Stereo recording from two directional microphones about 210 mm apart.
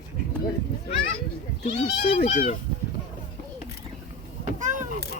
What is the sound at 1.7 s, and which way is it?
Speech, 30° left (ahead or behind).